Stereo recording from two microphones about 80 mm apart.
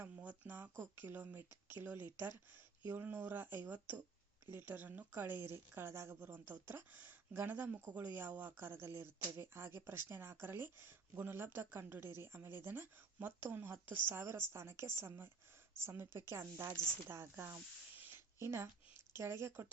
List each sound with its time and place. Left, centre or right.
0.2 s speech: right